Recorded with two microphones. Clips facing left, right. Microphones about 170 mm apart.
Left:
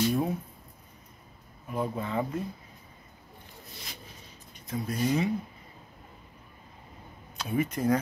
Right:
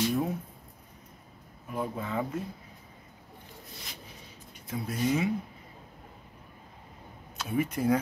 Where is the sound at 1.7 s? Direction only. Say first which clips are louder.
Left 2 dB; 5° right (ahead or behind).